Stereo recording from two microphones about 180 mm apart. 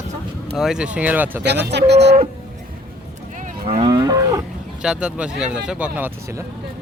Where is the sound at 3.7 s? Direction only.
35° right (ahead or behind).